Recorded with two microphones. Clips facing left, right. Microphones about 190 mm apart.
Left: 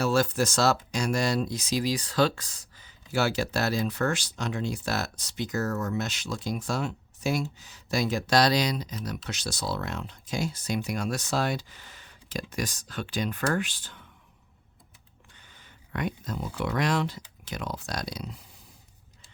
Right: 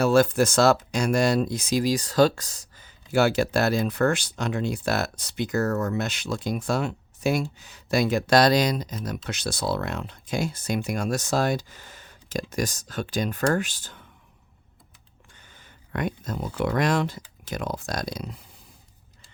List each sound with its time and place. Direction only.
0.0 s speech: 55° right (ahead or behind)
15.4 s speech: 50° right (ahead or behind)